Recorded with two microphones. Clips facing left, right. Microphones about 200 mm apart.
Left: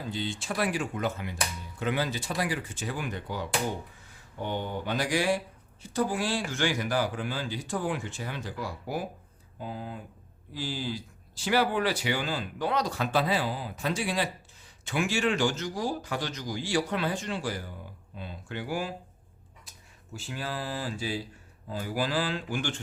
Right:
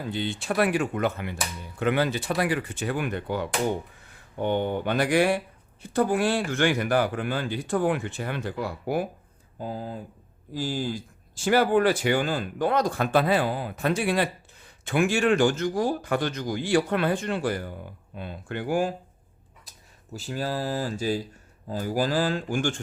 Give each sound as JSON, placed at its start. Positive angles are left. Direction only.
{"t": 0.0, "sound": "speech", "side_deg": -60}
{"t": 9.6, "sound": "speech", "side_deg": -40}
{"t": 20.1, "sound": "speech", "side_deg": -40}